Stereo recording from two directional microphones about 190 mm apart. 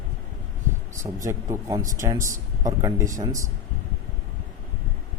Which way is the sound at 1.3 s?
15° right (ahead or behind).